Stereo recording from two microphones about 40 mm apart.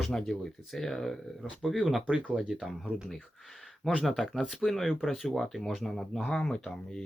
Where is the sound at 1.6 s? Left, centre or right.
Centre.